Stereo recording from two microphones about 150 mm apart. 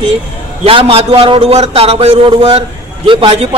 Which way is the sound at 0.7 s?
40° right (ahead or behind).